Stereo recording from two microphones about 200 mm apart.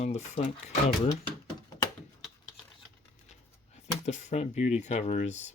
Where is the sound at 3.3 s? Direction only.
35° left (ahead or behind).